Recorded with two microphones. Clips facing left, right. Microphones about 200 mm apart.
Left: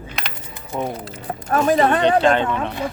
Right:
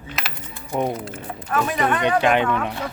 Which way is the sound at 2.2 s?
10° right (ahead or behind).